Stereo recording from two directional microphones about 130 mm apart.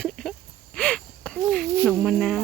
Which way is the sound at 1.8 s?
5° left (ahead or behind).